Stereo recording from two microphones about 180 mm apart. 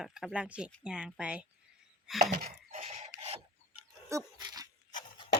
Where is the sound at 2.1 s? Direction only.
Centre (ahead or behind).